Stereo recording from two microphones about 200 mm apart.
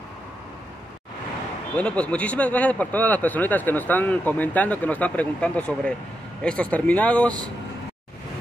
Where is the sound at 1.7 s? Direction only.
5° left (ahead or behind).